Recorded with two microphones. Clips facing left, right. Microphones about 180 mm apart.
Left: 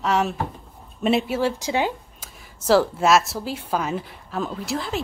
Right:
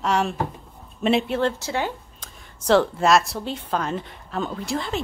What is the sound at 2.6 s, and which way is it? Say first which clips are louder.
Speech: even; 5° left (ahead or behind).